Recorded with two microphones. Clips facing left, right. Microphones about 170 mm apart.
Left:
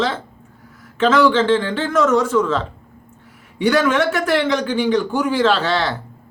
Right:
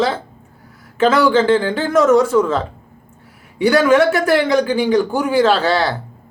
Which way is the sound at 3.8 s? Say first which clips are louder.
Right 5 dB; 5° right (ahead or behind).